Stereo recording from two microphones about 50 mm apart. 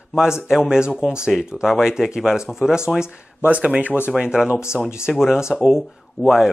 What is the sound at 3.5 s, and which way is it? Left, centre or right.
Speech, right.